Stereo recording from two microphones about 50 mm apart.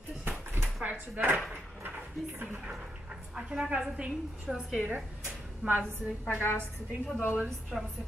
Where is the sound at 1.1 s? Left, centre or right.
Right.